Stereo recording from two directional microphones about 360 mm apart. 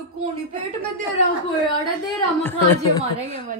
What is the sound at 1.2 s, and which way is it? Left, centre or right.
Speech, centre.